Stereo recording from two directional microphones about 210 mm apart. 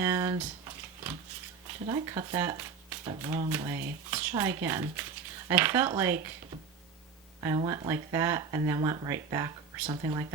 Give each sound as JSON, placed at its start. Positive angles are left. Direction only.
{"t": 0.0, "sound": "typing", "side_deg": -10}
{"t": 1.9, "sound": "speech", "side_deg": -15}
{"t": 7.4, "sound": "speech", "side_deg": -15}